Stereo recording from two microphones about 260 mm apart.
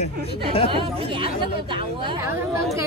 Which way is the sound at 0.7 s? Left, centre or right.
Centre.